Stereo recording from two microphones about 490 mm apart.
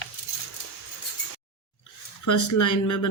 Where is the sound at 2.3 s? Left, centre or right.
Left.